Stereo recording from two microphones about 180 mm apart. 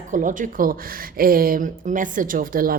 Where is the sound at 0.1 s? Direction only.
45° right (ahead or behind).